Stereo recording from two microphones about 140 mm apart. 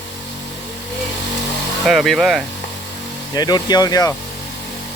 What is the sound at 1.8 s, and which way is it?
Speech, centre (ahead or behind).